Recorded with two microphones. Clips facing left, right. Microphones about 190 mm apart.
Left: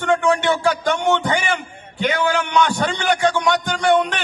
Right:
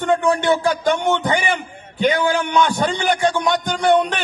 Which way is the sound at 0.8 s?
15° right (ahead or behind).